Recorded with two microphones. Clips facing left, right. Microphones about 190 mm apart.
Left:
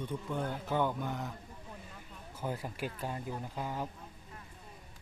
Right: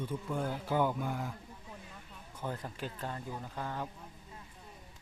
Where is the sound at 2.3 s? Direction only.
10° left (ahead or behind).